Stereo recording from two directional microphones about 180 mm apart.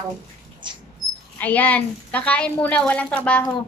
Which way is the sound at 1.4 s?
10° left (ahead or behind).